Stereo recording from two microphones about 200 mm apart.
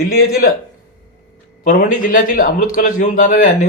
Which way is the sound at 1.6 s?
40° left (ahead or behind).